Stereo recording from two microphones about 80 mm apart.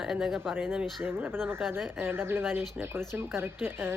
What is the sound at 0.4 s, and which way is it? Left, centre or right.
Speech, right.